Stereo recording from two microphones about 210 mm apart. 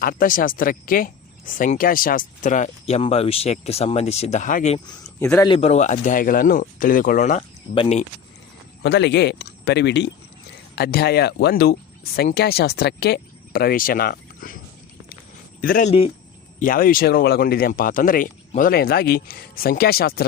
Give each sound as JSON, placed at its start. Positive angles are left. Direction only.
{"t": 0.0, "sound": "speech", "side_deg": 40}
{"t": 5.2, "sound": "speech", "side_deg": 5}
{"t": 5.5, "sound": "speech", "side_deg": 30}
{"t": 8.8, "sound": "speech", "side_deg": 55}
{"t": 15.6, "sound": "speech", "side_deg": 40}